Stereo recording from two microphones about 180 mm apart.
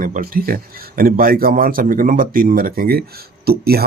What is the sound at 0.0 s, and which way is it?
Speech, 50° right (ahead or behind).